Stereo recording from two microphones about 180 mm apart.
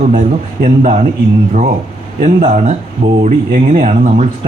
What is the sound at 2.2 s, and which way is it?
A man's voice, 45° right (ahead or behind).